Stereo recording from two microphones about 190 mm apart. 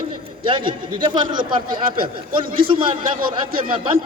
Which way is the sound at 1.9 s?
50° right (ahead or behind).